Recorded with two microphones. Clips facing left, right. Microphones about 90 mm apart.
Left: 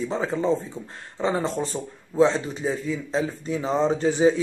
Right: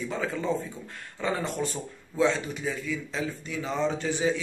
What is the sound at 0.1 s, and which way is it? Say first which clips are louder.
Speech: left 5 dB; 30° left (ahead or behind).